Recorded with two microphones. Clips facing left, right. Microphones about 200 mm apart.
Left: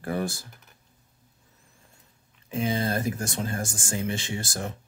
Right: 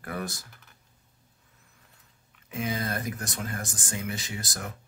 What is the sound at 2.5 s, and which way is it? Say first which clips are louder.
Speech: left 4 dB; 30° left (ahead or behind).